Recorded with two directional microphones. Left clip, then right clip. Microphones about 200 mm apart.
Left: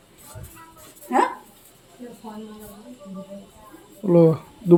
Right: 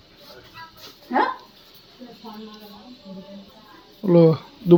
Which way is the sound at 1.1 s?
65° left (ahead or behind).